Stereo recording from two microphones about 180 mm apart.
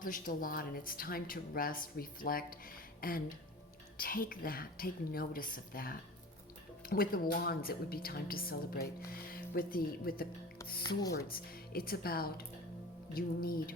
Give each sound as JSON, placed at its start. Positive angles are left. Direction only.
{"t": 0.0, "sound": "a woman's voice", "side_deg": 50}
{"t": 11.3, "sound": "speech", "side_deg": 55}